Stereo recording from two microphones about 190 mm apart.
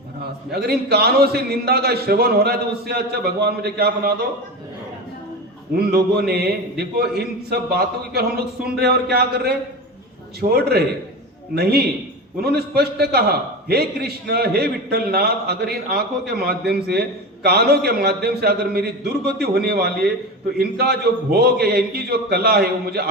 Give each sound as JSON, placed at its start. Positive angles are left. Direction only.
{"t": 0.5, "sound": "a man's voice", "side_deg": -55}
{"t": 5.7, "sound": "a man's voice", "side_deg": -55}